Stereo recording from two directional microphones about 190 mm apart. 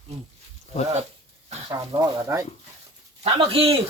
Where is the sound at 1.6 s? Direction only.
20° right (ahead or behind).